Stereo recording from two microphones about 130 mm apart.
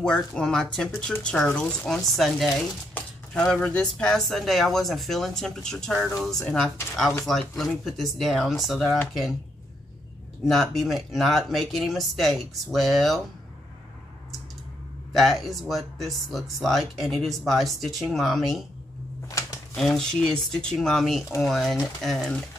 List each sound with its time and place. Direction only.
0.0 s speech: 5° left (ahead or behind)
10.4 s speech: centre (ahead or behind)
15.1 s speech: centre (ahead or behind)
19.7 s speech: 5° left (ahead or behind)